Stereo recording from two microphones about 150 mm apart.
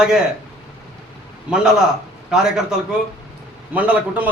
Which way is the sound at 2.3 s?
5° right (ahead or behind).